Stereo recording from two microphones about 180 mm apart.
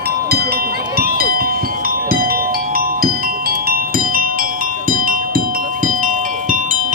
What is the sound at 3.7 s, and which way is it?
Music, 55° right (ahead or behind).